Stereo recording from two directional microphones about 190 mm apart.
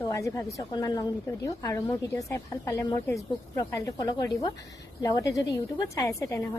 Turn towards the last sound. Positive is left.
turn(degrees=15)  # may be behind; listen again after turning